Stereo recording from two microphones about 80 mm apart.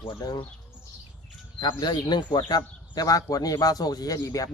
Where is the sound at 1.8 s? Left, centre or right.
Left.